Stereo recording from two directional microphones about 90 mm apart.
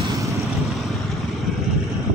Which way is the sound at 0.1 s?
35° right (ahead or behind).